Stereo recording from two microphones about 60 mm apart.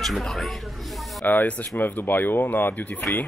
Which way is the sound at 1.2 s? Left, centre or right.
Left.